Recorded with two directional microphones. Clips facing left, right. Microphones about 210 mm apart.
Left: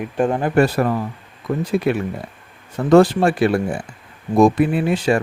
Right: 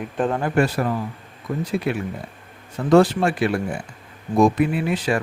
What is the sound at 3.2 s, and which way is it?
A man's voice, 35° left (ahead or behind).